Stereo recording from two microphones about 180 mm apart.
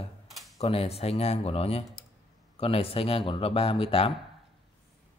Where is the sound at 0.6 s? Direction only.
35° left (ahead or behind).